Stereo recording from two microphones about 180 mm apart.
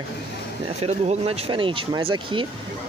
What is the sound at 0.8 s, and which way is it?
Speech, 35° right (ahead or behind).